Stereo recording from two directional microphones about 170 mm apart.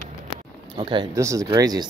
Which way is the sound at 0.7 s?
30° right (ahead or behind).